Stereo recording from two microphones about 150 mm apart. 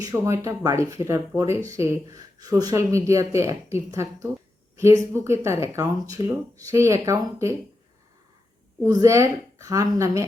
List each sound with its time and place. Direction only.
0.0 s speech: 20° right (ahead or behind)
8.8 s speech: 20° right (ahead or behind)